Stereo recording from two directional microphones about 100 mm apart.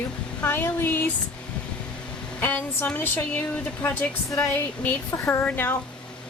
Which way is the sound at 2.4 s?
20° left (ahead or behind).